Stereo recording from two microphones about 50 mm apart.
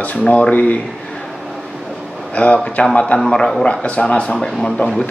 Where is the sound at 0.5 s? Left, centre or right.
Left.